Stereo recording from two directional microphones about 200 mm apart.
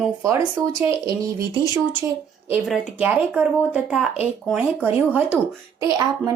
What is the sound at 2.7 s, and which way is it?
A woman's voice, 5° right (ahead or behind).